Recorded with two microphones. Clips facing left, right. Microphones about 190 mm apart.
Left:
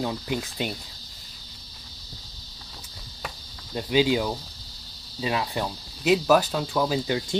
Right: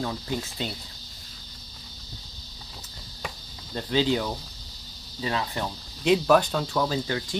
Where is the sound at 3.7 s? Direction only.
10° left (ahead or behind).